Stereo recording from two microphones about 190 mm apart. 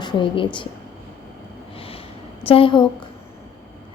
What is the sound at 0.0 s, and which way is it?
Speech, 25° left (ahead or behind).